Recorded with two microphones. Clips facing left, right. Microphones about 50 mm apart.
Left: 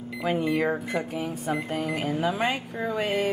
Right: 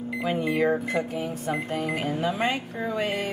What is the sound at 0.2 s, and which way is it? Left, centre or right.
Speech, centre.